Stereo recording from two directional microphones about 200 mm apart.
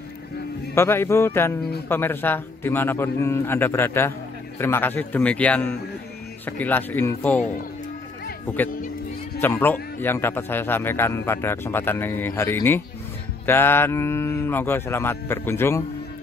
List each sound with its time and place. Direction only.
0.7 s speech: 10° left (ahead or behind)
9.4 s speech: 10° left (ahead or behind)